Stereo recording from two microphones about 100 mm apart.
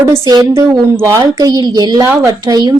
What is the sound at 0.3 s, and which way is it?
A woman's voice, 40° right (ahead or behind).